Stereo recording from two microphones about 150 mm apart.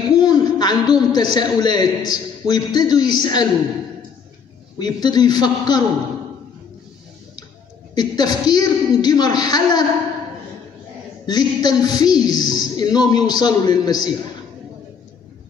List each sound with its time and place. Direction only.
0.1 s a man's voice: 25° left (ahead or behind)
4.7 s a woman's voice: 25° left (ahead or behind)
7.9 s a woman's voice: 25° left (ahead or behind)
11.2 s a woman's voice: 25° left (ahead or behind)